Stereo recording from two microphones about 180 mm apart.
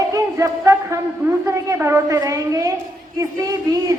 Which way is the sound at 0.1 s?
20° right (ahead or behind).